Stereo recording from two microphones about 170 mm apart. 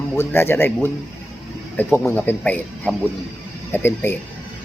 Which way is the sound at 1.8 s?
15° left (ahead or behind).